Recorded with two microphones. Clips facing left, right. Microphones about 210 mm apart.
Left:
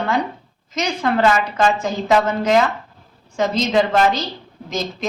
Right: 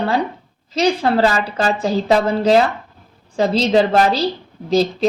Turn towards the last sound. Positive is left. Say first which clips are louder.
# right 9 dB
turn(degrees=-35)  # may be behind; listen again after turning